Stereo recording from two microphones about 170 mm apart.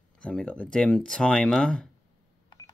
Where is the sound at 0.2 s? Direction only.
5° left (ahead or behind).